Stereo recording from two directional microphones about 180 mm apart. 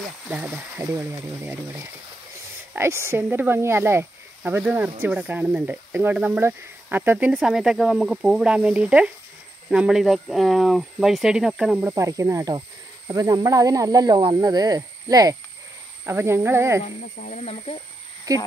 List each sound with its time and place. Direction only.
0.3 s speech: 10° right (ahead or behind)
11.9 s speech: 20° right (ahead or behind)
16.8 s speech: 40° left (ahead or behind)
18.3 s speech: 20° right (ahead or behind)